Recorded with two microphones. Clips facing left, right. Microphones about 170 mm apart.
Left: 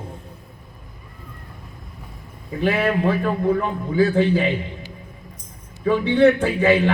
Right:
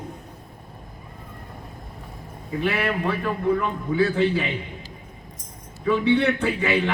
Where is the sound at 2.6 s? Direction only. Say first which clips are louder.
Left 5 dB; 40° left (ahead or behind).